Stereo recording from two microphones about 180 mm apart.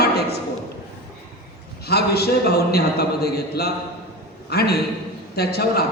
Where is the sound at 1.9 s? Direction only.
65° left (ahead or behind).